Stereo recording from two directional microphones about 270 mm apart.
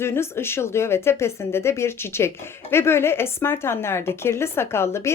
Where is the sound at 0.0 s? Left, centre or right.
Centre.